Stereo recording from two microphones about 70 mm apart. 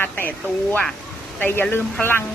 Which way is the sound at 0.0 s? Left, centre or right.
Left.